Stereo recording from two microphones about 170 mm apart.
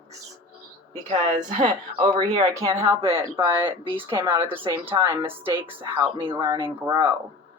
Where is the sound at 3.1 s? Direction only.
30° right (ahead or behind).